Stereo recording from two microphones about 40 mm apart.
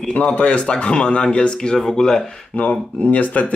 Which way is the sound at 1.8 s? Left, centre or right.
Centre.